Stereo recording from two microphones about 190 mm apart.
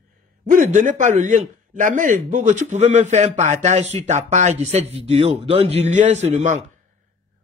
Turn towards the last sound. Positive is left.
turn(degrees=-40)  # may be behind; listen again after turning